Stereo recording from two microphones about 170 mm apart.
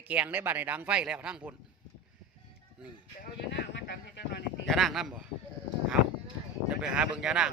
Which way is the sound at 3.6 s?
90° left.